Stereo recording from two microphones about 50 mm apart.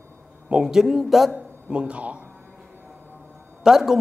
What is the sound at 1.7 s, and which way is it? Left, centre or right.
Speech, right.